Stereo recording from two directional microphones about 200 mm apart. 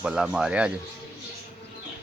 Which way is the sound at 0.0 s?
5° right (ahead or behind).